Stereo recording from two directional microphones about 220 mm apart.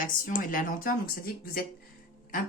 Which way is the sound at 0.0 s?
40° left (ahead or behind).